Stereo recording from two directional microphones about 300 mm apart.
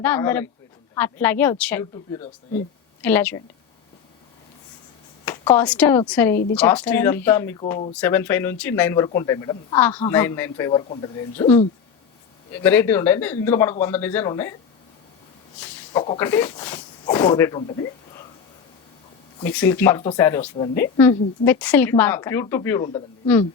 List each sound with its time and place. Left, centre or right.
0.0 s a woman's voice: centre
5.2 s a woman's voice: centre
12.5 s a woman's voice: centre
15.6 s a woman's voice: centre
19.4 s a woman's voice: centre